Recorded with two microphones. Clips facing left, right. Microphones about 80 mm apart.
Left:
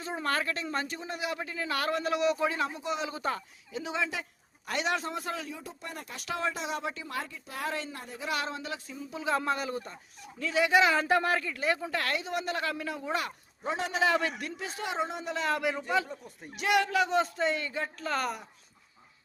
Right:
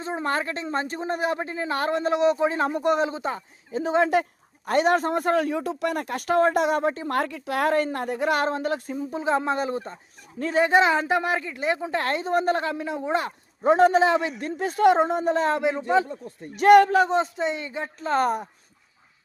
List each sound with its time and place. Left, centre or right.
0.0 s speech: right
2.6 s a man's voice: right
3.1 s speech: right
3.7 s a man's voice: right
7.2 s a woman's voice: right
12.6 s a man's voice: right
13.7 s a man's voice: right
14.0 s speech: right
14.4 s a man's voice: right
15.5 s speech: right
16.6 s a woman's voice: right
17.3 s speech: right